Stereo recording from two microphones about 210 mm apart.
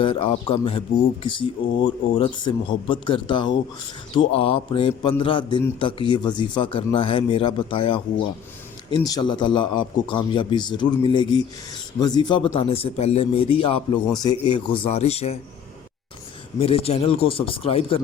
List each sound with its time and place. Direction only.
0.0 s speech: 25° left (ahead or behind)
16.6 s speech: 30° left (ahead or behind)